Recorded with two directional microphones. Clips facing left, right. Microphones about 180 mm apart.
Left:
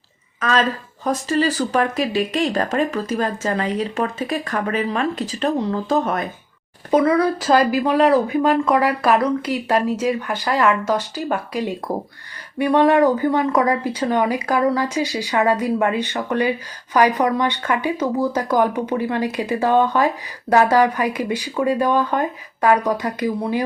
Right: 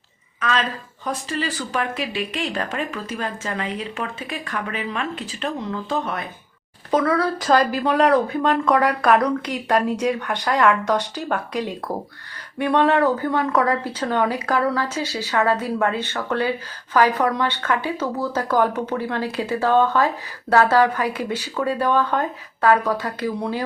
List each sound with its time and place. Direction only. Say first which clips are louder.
0.3 s speech: left 4 dB; 40° left (ahead or behind)
6.9 s speech: left 4 dB; 15° left (ahead or behind)